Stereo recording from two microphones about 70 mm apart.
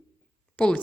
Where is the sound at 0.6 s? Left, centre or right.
Centre.